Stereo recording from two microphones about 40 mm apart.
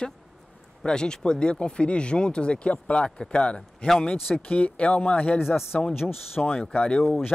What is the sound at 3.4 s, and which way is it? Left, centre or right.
Speech, left.